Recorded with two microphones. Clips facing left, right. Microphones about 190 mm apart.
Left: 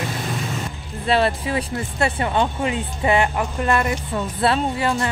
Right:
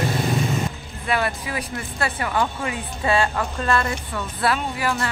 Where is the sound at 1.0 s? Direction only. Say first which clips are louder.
Left 5 dB; 30° left (ahead or behind).